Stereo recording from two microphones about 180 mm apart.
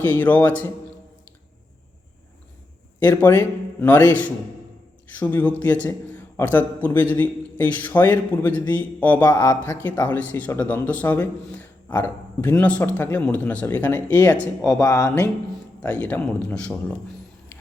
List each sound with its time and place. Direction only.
0.0 s speech: 10° left (ahead or behind)
3.0 s speech: 10° left (ahead or behind)